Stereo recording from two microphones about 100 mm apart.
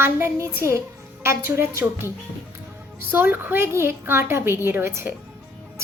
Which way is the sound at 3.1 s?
20° right (ahead or behind).